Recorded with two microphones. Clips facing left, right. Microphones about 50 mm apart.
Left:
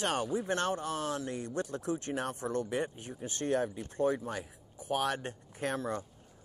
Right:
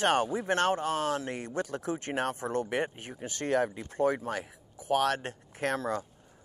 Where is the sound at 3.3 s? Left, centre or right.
Right.